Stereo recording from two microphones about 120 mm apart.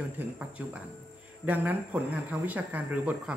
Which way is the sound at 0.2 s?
15° right (ahead or behind).